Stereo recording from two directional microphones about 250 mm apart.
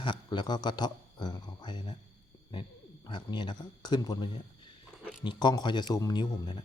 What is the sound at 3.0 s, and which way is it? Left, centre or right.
A man's voice, centre.